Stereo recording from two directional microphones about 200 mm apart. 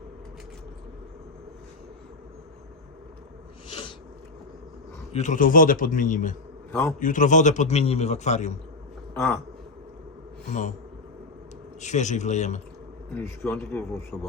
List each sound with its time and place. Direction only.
5.1 s a man's voice: 35° left (ahead or behind)
6.7 s a man's voice: 10° left (ahead or behind)
7.0 s a man's voice: 40° left (ahead or behind)
9.1 s speech: 10° left (ahead or behind)
10.5 s a man's voice: 35° left (ahead or behind)
11.8 s a man's voice: 35° left (ahead or behind)
13.1 s a man's voice: 10° left (ahead or behind)